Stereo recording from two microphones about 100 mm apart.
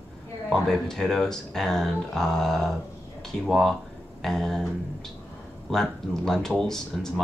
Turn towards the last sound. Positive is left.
turn(degrees=5)  # may be behind; listen again after turning